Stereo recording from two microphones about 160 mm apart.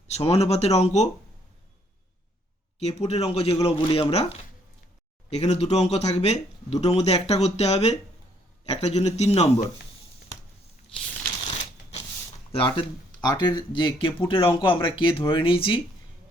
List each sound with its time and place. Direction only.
0.1 s speech: 40° left (ahead or behind)
2.7 s speech: 40° left (ahead or behind)
10.9 s a sound: 35° left (ahead or behind)
12.5 s speech: 35° left (ahead or behind)